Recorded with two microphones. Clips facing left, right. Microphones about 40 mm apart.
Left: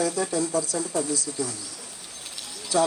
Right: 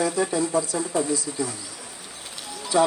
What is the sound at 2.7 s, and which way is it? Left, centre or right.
Speech, right.